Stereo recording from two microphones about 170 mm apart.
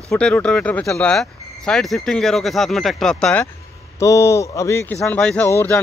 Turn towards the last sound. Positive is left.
turn(degrees=15)  # may be behind; listen again after turning